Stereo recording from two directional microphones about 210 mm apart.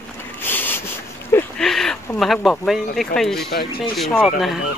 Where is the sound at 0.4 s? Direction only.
10° left (ahead or behind).